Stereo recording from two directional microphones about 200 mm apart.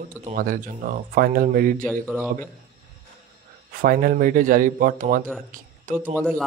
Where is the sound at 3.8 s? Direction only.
45° right (ahead or behind).